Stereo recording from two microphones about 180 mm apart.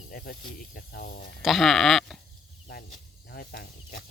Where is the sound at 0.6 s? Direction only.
50° left (ahead or behind).